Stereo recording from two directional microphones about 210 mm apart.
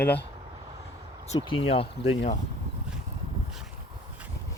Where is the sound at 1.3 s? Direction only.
25° left (ahead or behind).